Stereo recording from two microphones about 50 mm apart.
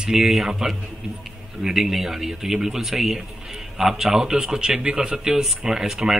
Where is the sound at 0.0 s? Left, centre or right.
Centre.